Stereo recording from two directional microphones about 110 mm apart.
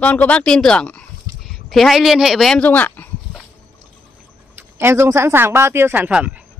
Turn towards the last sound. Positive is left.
turn(degrees=-10)  # may be behind; listen again after turning